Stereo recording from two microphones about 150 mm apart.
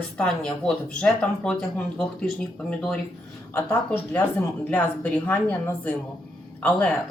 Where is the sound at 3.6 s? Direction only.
15° left (ahead or behind).